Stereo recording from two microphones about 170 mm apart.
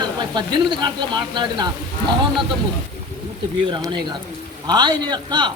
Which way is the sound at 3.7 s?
25° right (ahead or behind).